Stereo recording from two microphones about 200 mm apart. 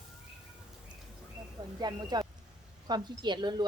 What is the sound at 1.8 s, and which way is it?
Speech, 20° right (ahead or behind).